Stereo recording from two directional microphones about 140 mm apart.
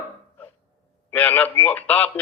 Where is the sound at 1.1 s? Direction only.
10° left (ahead or behind).